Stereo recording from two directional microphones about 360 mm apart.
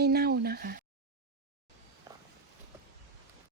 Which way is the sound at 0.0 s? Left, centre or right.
Right.